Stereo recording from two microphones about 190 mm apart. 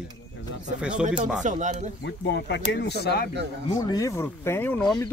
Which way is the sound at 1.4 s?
40° right (ahead or behind).